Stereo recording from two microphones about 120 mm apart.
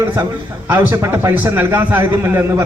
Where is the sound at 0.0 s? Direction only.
15° right (ahead or behind).